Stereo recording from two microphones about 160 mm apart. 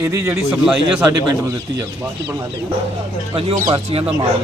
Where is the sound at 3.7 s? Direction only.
40° right (ahead or behind).